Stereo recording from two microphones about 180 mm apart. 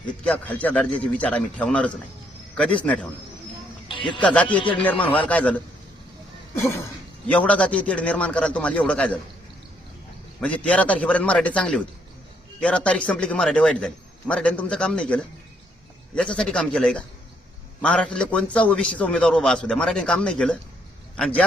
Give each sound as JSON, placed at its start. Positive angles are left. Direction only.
{"t": 0.3, "sound": "a man's voice", "side_deg": 10}
{"t": 3.8, "sound": "a sound", "side_deg": 30}
{"t": 4.2, "sound": "a man's voice", "side_deg": 5}
{"t": 7.3, "sound": "a man's voice", "side_deg": 5}
{"t": 10.4, "sound": "a man's voice", "side_deg": 5}